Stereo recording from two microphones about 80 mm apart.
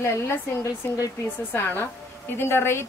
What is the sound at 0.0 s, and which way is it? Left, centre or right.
A woman's voice, left.